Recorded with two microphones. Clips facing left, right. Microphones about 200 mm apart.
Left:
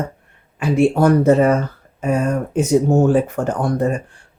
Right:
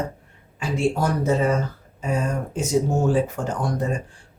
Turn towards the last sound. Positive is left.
turn(degrees=60)  # may be behind; listen again after turning